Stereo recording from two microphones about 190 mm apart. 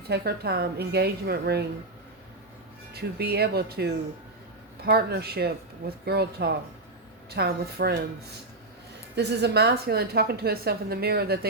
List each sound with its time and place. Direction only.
0.1 s a woman's voice: 60° right (ahead or behind)
2.9 s a woman's voice: 55° right (ahead or behind)
9.1 s a woman's voice: 60° right (ahead or behind)